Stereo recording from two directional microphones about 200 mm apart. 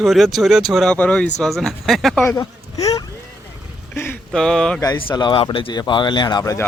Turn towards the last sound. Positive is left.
turn(degrees=20)  # may be behind; listen again after turning